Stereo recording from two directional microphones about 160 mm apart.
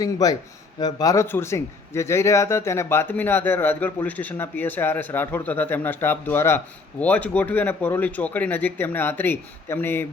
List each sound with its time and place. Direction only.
0.0 s speech: 25° left (ahead or behind)